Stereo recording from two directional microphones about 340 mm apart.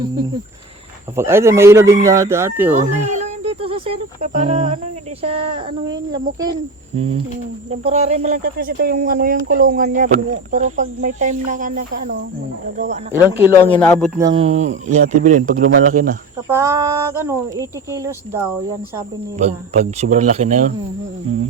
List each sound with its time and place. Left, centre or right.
1.1 s speech: centre
2.7 s speech: right
13.6 s speech: centre
14.2 s speech: centre
16.5 s speech: centre